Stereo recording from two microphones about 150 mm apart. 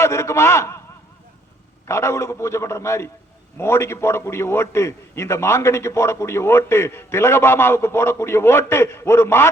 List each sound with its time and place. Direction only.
0.0 s a man's voice: 20° left (ahead or behind)
1.9 s a man's voice: 20° left (ahead or behind)